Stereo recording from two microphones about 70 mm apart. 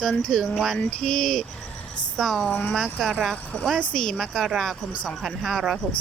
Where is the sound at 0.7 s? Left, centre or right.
Centre.